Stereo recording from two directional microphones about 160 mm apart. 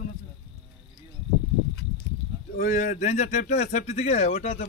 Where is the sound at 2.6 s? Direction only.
50° left (ahead or behind).